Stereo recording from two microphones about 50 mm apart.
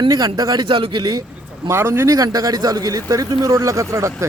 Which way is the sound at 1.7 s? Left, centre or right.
Right.